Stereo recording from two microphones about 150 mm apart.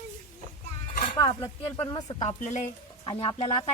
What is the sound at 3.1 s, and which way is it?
Speech, 35° left (ahead or behind).